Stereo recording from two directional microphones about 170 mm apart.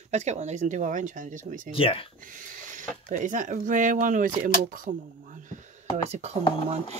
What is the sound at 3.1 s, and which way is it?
Speech, 50° right (ahead or behind).